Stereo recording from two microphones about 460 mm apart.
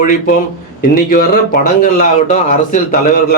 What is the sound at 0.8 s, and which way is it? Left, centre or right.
A man's voice, centre.